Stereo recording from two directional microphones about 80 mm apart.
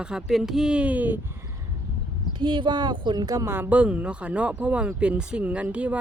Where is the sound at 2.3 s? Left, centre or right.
Right.